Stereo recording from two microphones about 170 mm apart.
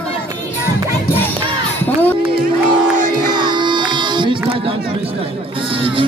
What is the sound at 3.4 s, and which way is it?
Music, 25° right (ahead or behind).